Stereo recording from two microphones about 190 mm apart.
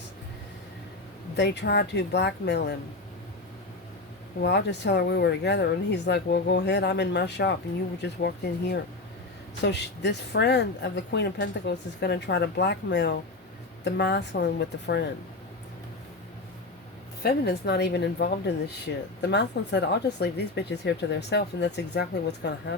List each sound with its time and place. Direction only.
1.4 s speech: 60° left (ahead or behind)
4.4 s speech: 65° left (ahead or behind)
17.2 s speech: 60° left (ahead or behind)